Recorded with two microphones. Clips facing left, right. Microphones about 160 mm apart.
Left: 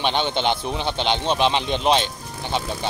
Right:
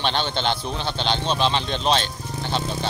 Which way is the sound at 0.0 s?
15° left (ahead or behind).